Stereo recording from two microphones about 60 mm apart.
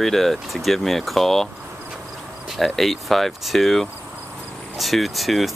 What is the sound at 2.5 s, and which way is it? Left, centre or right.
Speech, centre.